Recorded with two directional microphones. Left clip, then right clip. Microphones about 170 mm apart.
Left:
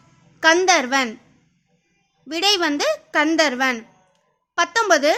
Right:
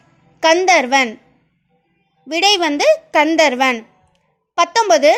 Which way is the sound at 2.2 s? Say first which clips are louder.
Right 5 dB; 15° right (ahead or behind).